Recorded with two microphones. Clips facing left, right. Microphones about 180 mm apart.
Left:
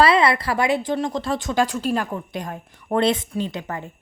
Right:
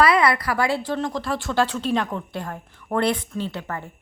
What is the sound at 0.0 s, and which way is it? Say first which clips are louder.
Speech: left 1 dB; 25° left (ahead or behind).